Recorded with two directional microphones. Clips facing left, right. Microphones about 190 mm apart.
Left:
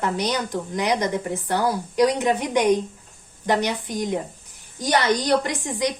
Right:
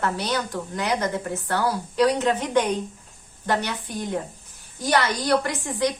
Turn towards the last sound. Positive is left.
turn(degrees=15)  # may be behind; listen again after turning